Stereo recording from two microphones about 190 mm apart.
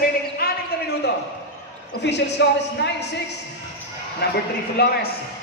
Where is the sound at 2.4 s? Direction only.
70° left (ahead or behind).